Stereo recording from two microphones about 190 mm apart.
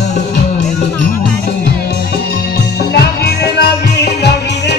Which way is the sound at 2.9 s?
60° left (ahead or behind).